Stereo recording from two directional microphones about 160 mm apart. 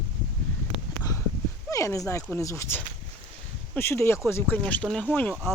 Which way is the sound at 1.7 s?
20° left (ahead or behind).